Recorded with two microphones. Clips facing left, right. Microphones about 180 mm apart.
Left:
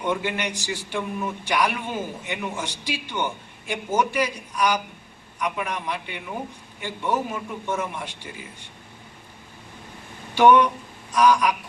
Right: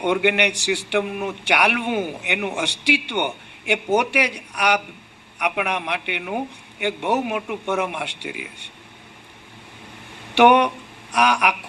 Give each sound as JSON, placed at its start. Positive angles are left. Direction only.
{"t": 0.0, "sound": "a man's voice", "side_deg": -70}
{"t": 10.3, "sound": "a man's voice", "side_deg": -70}